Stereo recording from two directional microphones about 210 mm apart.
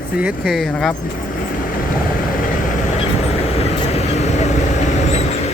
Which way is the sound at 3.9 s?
30° left (ahead or behind).